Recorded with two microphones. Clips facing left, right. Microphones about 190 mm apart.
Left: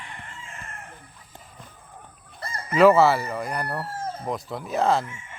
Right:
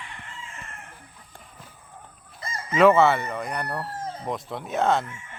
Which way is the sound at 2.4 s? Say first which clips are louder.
Even; 60° left (ahead or behind).